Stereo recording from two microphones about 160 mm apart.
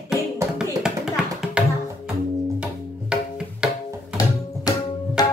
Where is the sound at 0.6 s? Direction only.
5° right (ahead or behind).